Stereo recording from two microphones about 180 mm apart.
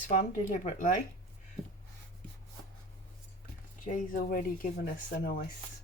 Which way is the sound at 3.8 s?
45° left (ahead or behind).